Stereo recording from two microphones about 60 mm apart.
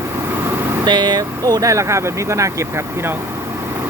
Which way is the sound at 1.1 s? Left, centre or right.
Right.